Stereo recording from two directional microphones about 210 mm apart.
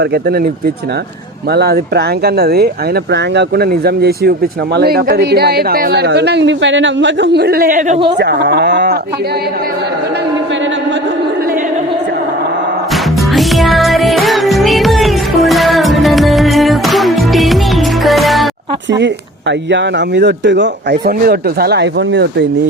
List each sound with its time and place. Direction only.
0.0 s speech: 50° right (ahead or behind)
8.2 s speech: 50° right (ahead or behind)
13.3 s music: centre (ahead or behind)
18.9 s speech: 60° right (ahead or behind)